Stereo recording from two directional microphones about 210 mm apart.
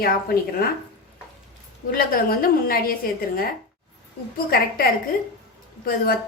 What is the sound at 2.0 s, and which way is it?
Speech, 45° left (ahead or behind).